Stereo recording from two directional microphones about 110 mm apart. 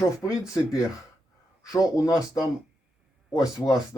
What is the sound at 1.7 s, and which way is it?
Speech, 30° left (ahead or behind).